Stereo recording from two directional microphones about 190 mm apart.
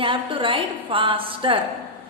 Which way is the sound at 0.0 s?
25° right (ahead or behind).